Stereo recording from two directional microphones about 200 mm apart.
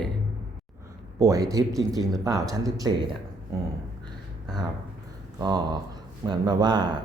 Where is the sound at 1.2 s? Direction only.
15° right (ahead or behind).